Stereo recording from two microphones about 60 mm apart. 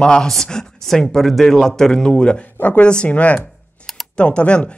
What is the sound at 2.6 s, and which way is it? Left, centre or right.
Speech, left.